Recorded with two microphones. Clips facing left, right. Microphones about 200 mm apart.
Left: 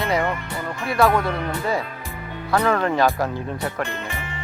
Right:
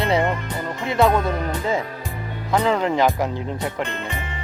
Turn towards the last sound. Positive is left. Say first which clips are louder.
# right 1 dB
turn(degrees=-20)  # may be behind; listen again after turning